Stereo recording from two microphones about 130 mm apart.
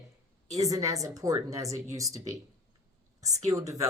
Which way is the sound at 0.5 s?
25° right (ahead or behind).